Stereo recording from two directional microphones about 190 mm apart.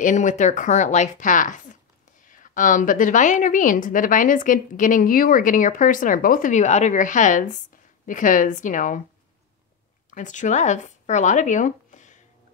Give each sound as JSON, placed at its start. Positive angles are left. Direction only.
{"t": 0.0, "sound": "a woman's voice", "side_deg": 40}
{"t": 10.1, "sound": "speech", "side_deg": 40}